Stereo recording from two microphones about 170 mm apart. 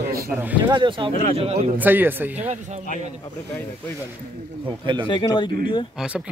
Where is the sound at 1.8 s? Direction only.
10° right (ahead or behind).